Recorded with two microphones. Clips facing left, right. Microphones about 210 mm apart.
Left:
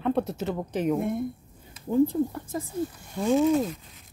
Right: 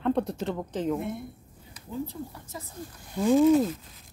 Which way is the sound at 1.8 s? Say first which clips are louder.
Left 12 dB; 55° left (ahead or behind).